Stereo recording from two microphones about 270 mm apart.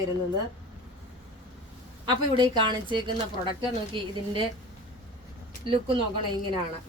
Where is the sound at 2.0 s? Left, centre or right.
Centre.